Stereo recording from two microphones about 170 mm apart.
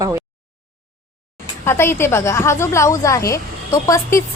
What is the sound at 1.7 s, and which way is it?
A woman's voice, 15° left (ahead or behind).